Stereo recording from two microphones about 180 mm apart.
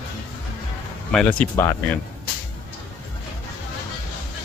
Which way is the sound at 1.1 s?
5° left (ahead or behind).